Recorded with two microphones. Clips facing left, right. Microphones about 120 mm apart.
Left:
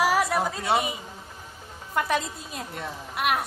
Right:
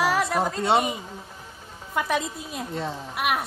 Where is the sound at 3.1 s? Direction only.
Centre (ahead or behind).